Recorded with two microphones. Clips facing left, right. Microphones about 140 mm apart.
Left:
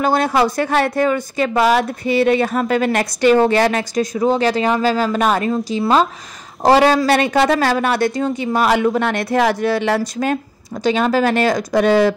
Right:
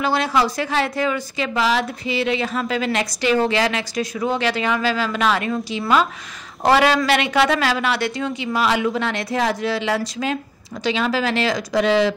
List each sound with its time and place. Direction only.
0.0 s a woman's voice: 50° left (ahead or behind)